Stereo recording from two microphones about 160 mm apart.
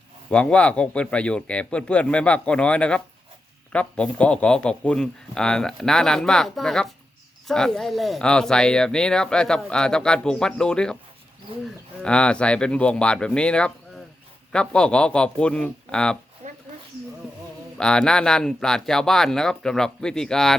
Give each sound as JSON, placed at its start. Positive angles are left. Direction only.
{"t": 0.3, "sound": "speech", "side_deg": 5}
{"t": 12.0, "sound": "speech", "side_deg": 5}
{"t": 16.4, "sound": "chopping", "side_deg": -50}
{"t": 17.7, "sound": "speech", "side_deg": 5}